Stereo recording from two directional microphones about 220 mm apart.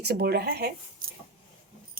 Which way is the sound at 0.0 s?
50° right (ahead or behind).